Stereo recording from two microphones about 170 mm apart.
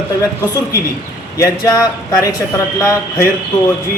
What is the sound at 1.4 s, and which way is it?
Speech, 20° left (ahead or behind).